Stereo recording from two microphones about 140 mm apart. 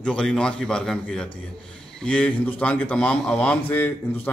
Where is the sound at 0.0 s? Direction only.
5° left (ahead or behind).